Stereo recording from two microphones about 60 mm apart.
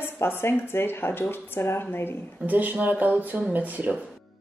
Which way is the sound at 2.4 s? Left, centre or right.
Right.